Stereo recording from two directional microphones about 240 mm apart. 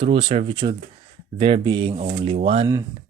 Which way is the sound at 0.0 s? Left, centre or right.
Right.